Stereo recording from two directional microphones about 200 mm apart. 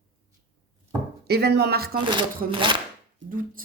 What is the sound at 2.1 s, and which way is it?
Speech, 25° right (ahead or behind).